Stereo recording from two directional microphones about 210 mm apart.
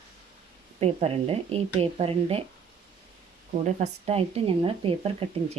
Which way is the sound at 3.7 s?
35° right (ahead or behind).